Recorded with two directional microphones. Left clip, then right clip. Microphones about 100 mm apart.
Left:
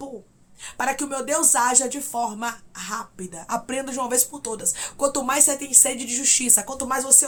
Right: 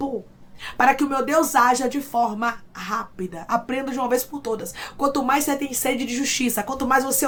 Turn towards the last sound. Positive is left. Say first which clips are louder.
# right 3 dB
turn(degrees=15)  # may be behind; listen again after turning